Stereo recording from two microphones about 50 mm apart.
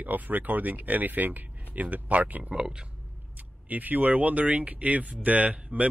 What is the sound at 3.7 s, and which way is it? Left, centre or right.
Speech, right.